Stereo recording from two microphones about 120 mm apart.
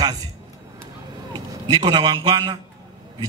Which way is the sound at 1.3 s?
35° right (ahead or behind).